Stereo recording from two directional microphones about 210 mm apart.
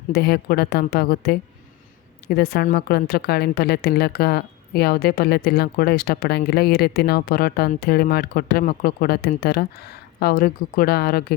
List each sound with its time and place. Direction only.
0.1 s a woman's voice: 45° left (ahead or behind)